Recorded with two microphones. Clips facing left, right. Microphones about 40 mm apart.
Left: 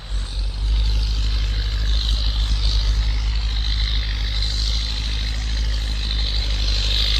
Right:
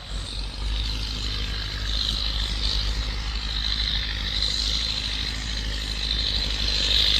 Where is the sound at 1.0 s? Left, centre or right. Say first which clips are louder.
Even; right.